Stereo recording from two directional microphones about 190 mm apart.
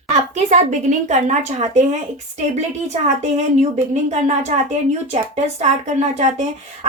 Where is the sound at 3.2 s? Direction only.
35° right (ahead or behind).